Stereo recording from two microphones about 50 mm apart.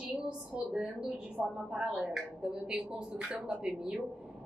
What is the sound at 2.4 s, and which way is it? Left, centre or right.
A woman's voice, centre.